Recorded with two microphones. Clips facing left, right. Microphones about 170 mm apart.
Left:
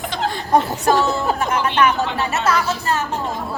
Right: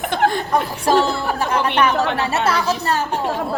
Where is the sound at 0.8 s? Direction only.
30° right (ahead or behind).